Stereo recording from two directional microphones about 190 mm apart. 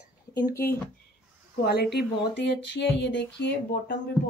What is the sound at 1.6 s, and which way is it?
Speech, 55° left (ahead or behind).